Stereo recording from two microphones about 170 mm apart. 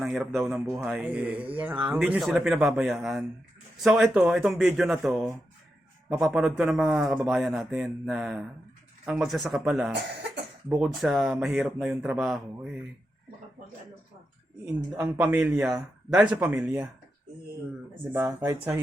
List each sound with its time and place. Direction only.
0.1 s speech: centre (ahead or behind)
14.8 s a man's voice: 10° right (ahead or behind)
18.3 s a man's voice: 15° right (ahead or behind)